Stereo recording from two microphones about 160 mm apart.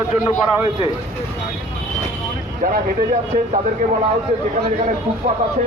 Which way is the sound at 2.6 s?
60° right (ahead or behind).